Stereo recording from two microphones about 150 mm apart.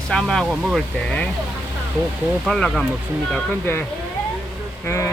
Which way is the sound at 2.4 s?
5° left (ahead or behind).